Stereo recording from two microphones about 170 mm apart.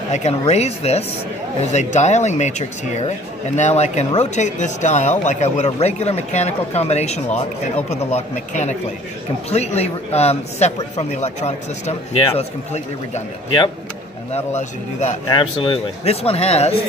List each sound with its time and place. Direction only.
0.1 s speech: 40° left (ahead or behind)
14.3 s a man's voice: 40° left (ahead or behind)
15.2 s speech: 30° left (ahead or behind)